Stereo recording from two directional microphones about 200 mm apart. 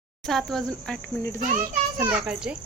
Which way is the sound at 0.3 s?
Centre (ahead or behind).